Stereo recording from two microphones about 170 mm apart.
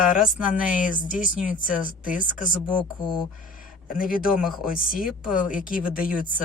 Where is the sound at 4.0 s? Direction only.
55° left (ahead or behind).